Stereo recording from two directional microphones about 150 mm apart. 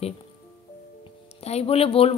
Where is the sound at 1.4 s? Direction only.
45° left (ahead or behind).